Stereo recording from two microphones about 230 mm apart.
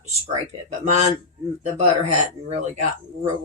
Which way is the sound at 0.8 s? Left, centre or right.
Right.